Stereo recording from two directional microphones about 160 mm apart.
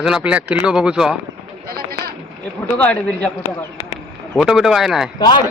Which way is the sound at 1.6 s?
75° right (ahead or behind).